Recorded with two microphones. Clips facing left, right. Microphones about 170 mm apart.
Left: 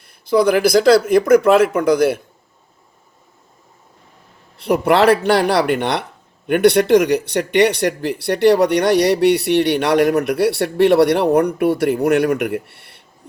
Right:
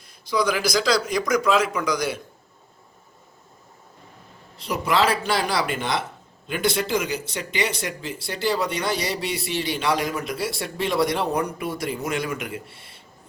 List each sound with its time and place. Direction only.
0.0 s a man's voice: 55° left (ahead or behind)
4.5 s a man's voice: 60° left (ahead or behind)